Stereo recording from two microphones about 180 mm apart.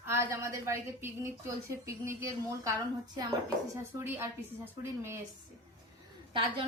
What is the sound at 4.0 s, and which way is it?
Speech, 10° right (ahead or behind).